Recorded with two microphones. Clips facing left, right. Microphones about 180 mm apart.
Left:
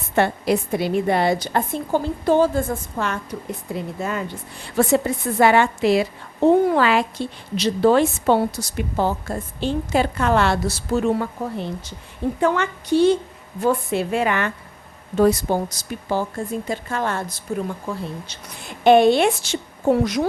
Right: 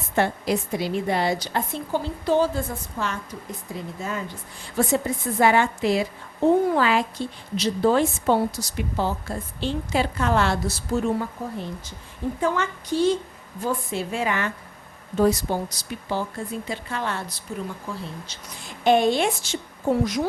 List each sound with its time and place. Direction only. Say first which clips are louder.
0.2 s a woman's voice: left 4 dB; 60° left (ahead or behind)
18.3 s a woman's voice: left 3 dB; 60° left (ahead or behind)